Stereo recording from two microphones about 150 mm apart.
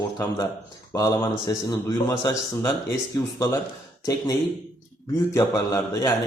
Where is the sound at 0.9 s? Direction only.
20° left (ahead or behind).